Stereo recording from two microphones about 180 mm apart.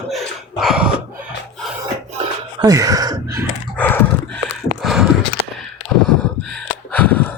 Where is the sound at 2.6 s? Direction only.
20° right (ahead or behind).